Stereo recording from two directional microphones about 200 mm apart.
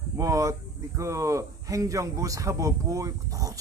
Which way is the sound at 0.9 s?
15° right (ahead or behind).